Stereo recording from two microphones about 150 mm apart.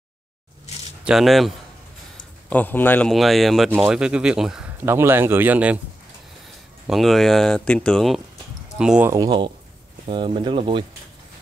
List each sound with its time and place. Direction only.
1.0 s speech: centre (ahead or behind)
2.5 s a man's voice: 10° left (ahead or behind)
3.1 s speech: centre (ahead or behind)
4.8 s speech: 15° right (ahead or behind)
6.9 s speech: centre (ahead or behind)
9.1 s speech: 25° right (ahead or behind)